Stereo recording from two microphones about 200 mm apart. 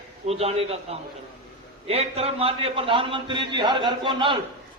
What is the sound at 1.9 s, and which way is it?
A man's voice, 30° right (ahead or behind).